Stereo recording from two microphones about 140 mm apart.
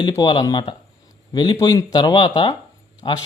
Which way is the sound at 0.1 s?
30° left (ahead or behind).